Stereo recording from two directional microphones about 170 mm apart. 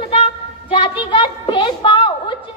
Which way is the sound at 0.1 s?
35° left (ahead or behind).